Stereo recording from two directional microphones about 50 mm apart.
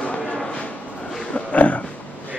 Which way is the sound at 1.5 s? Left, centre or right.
Left.